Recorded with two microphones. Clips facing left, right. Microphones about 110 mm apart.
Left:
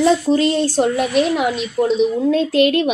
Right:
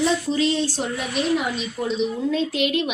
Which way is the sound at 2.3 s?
45° left (ahead or behind).